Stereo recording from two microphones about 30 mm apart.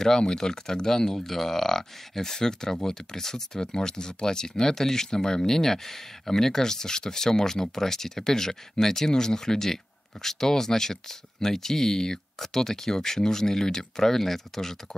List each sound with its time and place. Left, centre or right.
0.2 s speech: left